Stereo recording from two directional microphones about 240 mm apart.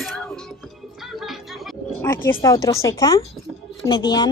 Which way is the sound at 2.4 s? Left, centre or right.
Centre.